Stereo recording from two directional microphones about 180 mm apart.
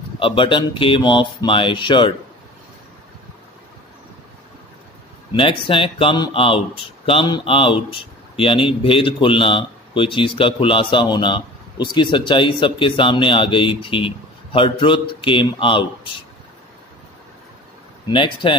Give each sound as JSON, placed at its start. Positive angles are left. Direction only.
{"t": 0.2, "sound": "speech", "side_deg": 30}
{"t": 5.3, "sound": "speech", "side_deg": 30}
{"t": 18.0, "sound": "speech", "side_deg": 30}